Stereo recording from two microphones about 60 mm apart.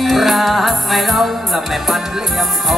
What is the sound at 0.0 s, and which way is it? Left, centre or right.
Music, centre.